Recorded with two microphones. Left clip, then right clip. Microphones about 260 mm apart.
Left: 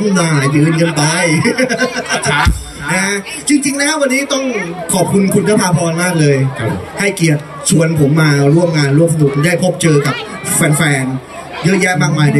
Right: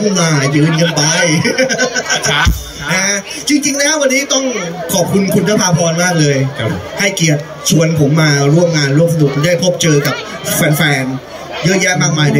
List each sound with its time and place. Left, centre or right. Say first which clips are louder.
0.1 s a man's voice: even; centre